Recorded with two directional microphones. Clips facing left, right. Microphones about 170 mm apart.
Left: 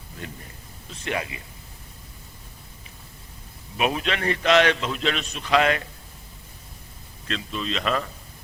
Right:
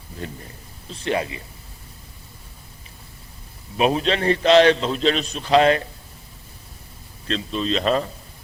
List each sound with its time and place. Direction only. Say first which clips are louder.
0.2 s a man's voice: right 5 dB; 30° right (ahead or behind)
3.8 s a man's voice: right 5 dB; 30° right (ahead or behind)
7.3 s a man's voice: right 6 dB; 30° right (ahead or behind)